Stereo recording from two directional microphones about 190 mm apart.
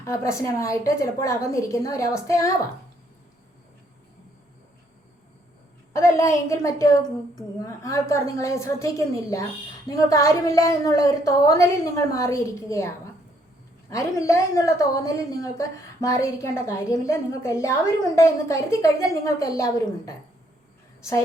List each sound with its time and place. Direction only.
0.0 s a woman's voice: 15° left (ahead or behind)
5.9 s a woman's voice: 15° left (ahead or behind)
13.9 s a woman's voice: 15° left (ahead or behind)